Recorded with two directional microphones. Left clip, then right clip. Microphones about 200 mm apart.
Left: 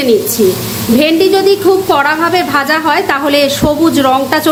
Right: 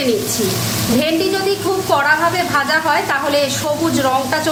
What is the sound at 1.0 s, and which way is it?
A woman's voice, 40° left (ahead or behind).